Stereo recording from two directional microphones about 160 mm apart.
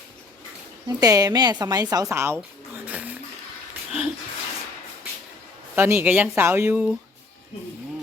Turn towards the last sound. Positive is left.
turn(degrees=-10)  # may be behind; listen again after turning